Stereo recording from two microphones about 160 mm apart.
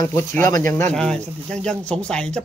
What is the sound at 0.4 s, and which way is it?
Speech, 15° left (ahead or behind).